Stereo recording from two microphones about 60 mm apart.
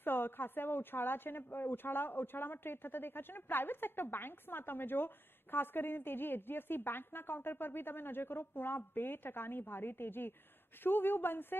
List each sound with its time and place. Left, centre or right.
0.0 s a woman's voice: left